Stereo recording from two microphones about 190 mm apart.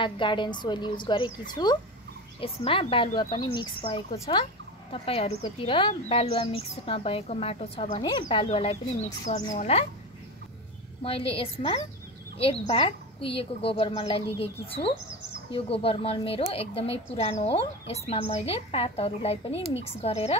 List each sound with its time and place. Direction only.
0.0 s a woman's voice: 25° left (ahead or behind)
11.0 s a woman's voice: 30° left (ahead or behind)